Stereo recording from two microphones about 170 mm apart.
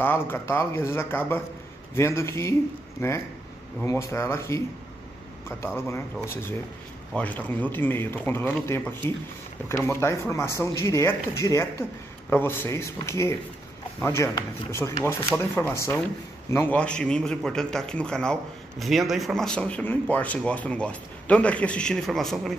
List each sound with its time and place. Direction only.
0.0 s speech: 10° left (ahead or behind)
5.8 s a man's voice: 15° left (ahead or behind)